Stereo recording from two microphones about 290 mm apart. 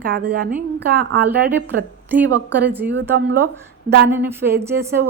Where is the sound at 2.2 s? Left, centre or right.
Right.